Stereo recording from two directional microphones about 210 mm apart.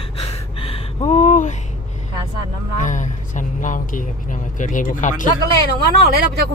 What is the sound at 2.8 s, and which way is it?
Speech, 35° left (ahead or behind).